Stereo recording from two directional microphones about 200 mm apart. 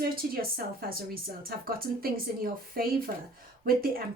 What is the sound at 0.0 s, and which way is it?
A woman's voice, 50° right (ahead or behind).